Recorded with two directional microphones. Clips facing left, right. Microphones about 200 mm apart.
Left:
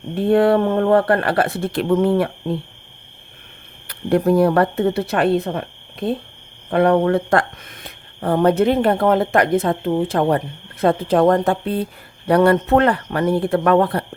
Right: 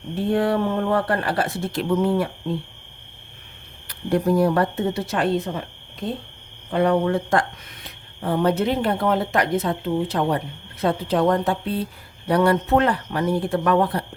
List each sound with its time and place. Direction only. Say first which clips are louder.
0.3 s speech: left 6 dB; 60° left (ahead or behind)
3.8 s speech: left 4 dB; 60° left (ahead or behind)
7.9 s speech: left 5 dB; 50° left (ahead or behind)